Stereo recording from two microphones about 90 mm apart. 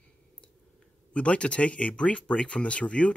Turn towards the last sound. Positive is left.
turn(degrees=15)  # may be behind; listen again after turning